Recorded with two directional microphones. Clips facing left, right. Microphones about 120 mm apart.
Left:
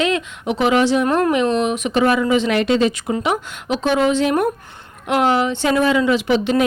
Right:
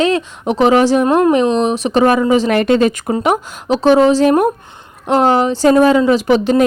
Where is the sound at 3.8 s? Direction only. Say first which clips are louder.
Right 7 dB; 35° right (ahead or behind).